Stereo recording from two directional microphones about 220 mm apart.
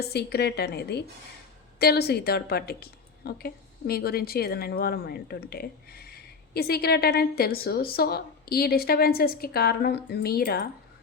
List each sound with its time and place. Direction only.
0.0 s a woman's voice: 50° left (ahead or behind)